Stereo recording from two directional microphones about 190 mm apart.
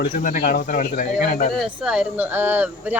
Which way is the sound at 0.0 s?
45° left (ahead or behind).